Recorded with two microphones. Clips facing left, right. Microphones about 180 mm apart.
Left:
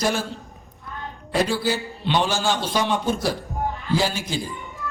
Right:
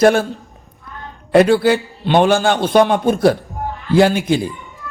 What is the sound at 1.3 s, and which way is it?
A man's voice, 60° right (ahead or behind).